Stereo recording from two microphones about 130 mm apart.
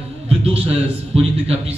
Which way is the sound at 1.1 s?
50° right (ahead or behind).